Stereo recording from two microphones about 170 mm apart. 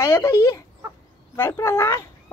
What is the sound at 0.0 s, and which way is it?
Speech, 15° left (ahead or behind).